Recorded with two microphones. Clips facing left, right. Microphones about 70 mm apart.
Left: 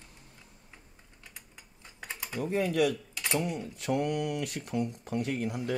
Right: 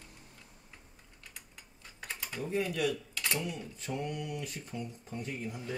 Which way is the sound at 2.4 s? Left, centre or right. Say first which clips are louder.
Left 5 dB; left.